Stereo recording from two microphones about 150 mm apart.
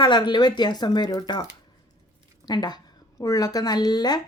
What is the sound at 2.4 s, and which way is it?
Speech, 30° left (ahead or behind).